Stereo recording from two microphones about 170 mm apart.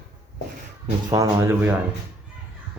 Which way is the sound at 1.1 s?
20° right (ahead or behind).